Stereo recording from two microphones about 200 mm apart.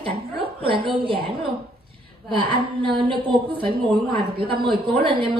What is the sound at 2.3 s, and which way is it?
A woman's voice, 25° right (ahead or behind).